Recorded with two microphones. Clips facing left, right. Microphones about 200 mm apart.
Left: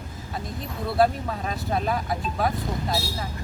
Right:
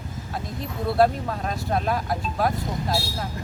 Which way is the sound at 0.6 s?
Centre (ahead or behind).